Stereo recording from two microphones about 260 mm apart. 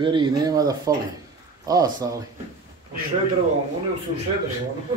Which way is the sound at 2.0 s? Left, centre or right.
Centre.